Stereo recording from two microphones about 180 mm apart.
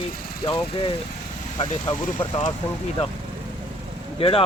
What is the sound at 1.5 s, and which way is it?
Speech, 25° left (ahead or behind).